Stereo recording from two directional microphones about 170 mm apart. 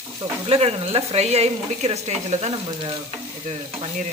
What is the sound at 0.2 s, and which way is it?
Speech, 35° right (ahead or behind).